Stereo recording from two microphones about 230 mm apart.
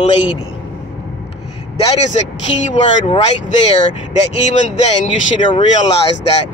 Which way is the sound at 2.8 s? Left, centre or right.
Left.